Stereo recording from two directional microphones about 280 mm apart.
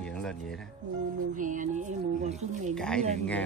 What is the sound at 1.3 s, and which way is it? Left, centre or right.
Speech, right.